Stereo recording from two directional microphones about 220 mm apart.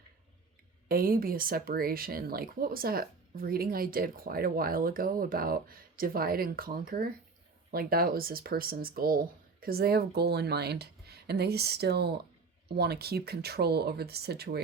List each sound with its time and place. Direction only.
0.9 s speech: 40° right (ahead or behind)